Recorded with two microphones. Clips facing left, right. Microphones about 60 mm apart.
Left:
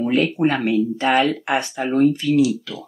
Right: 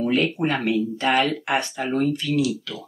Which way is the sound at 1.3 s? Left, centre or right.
Centre.